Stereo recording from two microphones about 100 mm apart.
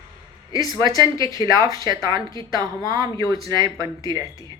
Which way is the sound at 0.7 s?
40° right (ahead or behind).